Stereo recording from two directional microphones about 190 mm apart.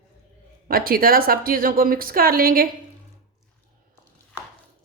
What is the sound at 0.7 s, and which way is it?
A woman's voice, 50° right (ahead or behind).